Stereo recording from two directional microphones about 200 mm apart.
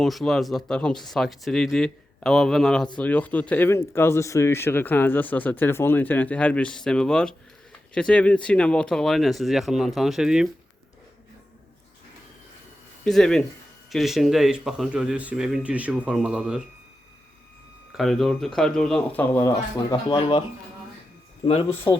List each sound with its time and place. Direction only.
0.0 s speech: centre (ahead or behind)
13.1 s speech: centre (ahead or behind)
17.9 s speech: centre (ahead or behind); by 20.4 s 25° left (ahead or behind)
21.4 s speech: 30° left (ahead or behind)